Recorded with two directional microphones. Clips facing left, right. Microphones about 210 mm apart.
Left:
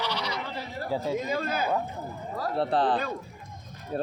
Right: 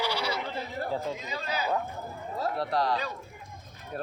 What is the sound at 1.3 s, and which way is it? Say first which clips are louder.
Speech: left 5 dB; 50° left (ahead or behind).